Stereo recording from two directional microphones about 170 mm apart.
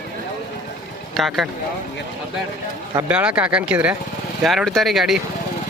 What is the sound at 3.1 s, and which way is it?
A man's voice, 5° right (ahead or behind).